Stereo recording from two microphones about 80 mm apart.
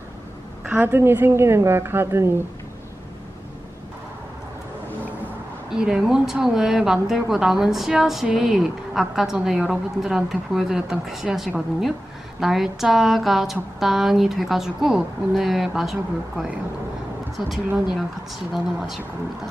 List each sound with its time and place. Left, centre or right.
0.7 s a woman's voice: right
5.7 s a woman's voice: centre
18.5 s a woman's voice: centre